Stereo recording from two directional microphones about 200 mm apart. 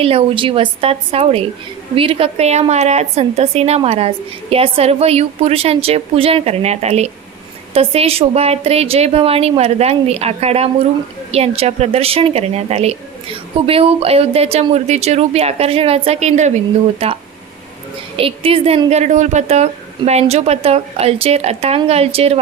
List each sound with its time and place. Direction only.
0.0 s a woman's voice: 30° right (ahead or behind)
18.2 s a woman's voice: 25° right (ahead or behind)